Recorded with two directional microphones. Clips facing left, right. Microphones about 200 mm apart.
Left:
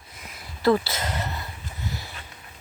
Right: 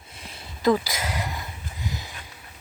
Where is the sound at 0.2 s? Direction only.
30° right (ahead or behind).